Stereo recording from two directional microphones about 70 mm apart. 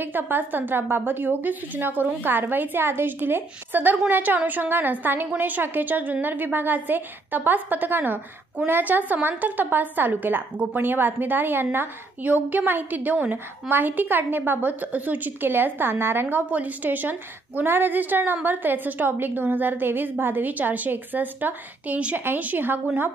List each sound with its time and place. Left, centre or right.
0.0 s a woman's voice: right